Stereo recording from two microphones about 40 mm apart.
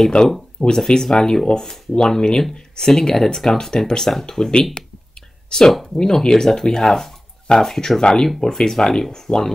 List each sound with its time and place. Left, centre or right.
0.2 s speech: left
0.7 s speech: centre
2.5 s a sound: centre
2.9 s speech: centre
8.0 s speech: centre